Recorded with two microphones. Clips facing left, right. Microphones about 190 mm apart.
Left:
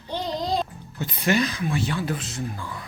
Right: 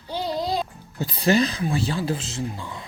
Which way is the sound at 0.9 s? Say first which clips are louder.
Right 3 dB; 35° right (ahead or behind).